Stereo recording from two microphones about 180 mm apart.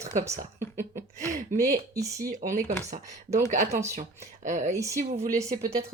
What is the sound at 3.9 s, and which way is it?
Speech, 40° right (ahead or behind).